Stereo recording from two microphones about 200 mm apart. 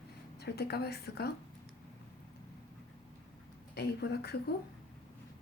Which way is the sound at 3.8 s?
55° left (ahead or behind).